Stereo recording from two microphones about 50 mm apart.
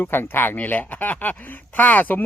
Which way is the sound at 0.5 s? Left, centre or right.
Left.